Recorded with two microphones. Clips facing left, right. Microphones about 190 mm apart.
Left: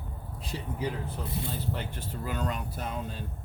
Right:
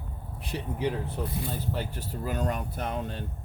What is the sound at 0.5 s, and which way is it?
Speech, 60° right (ahead or behind).